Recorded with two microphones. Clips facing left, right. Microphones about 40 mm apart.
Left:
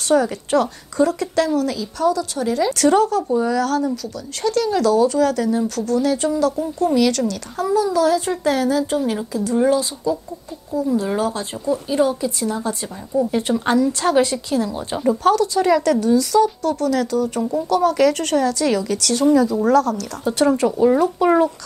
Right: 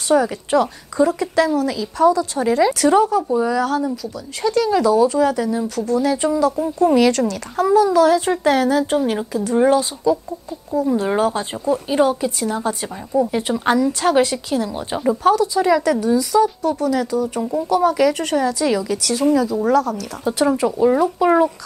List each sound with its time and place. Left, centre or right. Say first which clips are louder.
0.1 s a woman's voice: right 1 dB; centre
2.7 s speech: right 1 dB; centre
3.6 s a woman's voice: even; right
6.6 s a woman's voice: right 5 dB; right
13.3 s speech: even; centre
20.2 s speech: left 1 dB; centre